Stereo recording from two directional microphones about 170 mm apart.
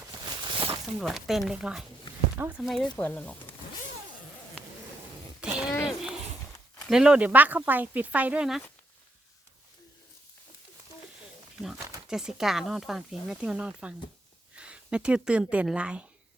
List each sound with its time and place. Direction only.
0.2 s a sound: 30° right (ahead or behind)
1.0 s speech: centre (ahead or behind)
2.9 s speech: 10° left (ahead or behind)
5.4 s a sound: 5° right (ahead or behind)
6.8 s speech: 5° right (ahead or behind)
12.0 s speech: 5° right (ahead or behind)